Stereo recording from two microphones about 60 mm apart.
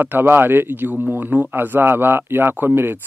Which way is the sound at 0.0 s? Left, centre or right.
Right.